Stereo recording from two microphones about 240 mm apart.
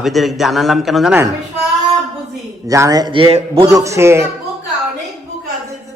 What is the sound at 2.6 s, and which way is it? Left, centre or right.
A man's voice, centre.